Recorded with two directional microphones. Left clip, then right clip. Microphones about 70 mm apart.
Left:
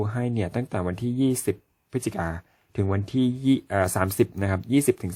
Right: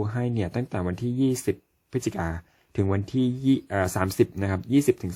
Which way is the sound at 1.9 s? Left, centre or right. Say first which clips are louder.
Even; left.